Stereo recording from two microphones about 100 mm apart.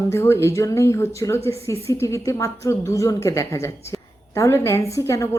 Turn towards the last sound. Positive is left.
turn(degrees=30)  # may be behind; listen again after turning